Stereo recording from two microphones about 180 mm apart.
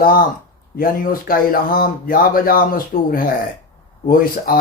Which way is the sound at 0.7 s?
50° left (ahead or behind).